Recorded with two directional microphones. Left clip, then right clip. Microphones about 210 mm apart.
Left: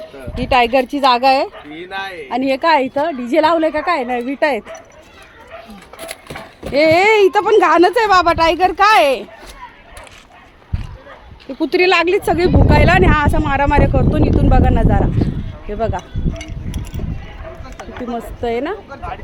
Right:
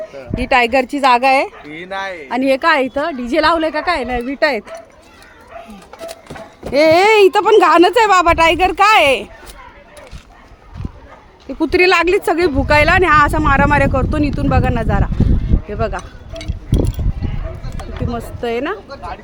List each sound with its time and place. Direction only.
0.3 s speech: 5° right (ahead or behind)
1.7 s speech: 30° right (ahead or behind)
2.3 s speech: centre (ahead or behind)
6.1 s speech: centre (ahead or behind)
11.6 s speech: 10° right (ahead or behind)
18.1 s speech: centre (ahead or behind)
18.9 s a woman's voice: 50° right (ahead or behind)